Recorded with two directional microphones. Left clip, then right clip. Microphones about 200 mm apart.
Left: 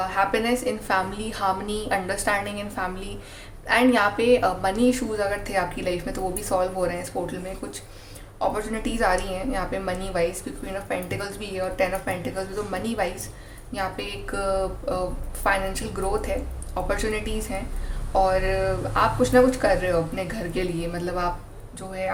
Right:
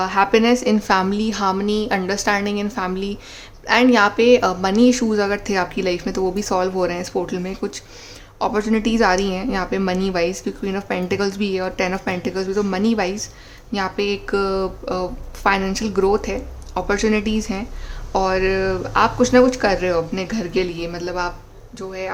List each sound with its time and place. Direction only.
0.0 s a woman's voice: 45° right (ahead or behind)